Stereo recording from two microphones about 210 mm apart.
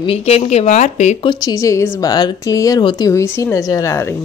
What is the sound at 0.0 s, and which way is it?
Speech, 30° left (ahead or behind).